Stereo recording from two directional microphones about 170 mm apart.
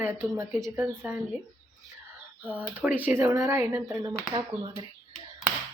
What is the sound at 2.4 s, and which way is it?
A woman's voice, 10° right (ahead or behind).